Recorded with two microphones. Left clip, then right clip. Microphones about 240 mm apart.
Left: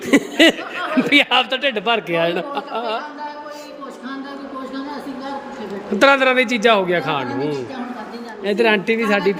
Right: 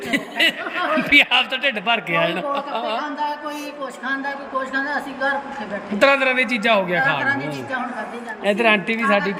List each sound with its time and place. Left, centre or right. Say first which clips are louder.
0.1 s a man's voice: left 6 dB; centre
6.0 s a man's voice: left 3 dB; centre
8.4 s speech: left 1 dB; centre